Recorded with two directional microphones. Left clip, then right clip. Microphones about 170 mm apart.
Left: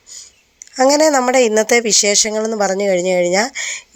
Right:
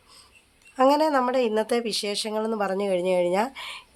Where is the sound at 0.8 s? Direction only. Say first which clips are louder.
Left 8 dB; 30° left (ahead or behind).